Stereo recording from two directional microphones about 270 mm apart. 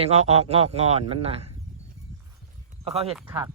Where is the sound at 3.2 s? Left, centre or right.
Centre.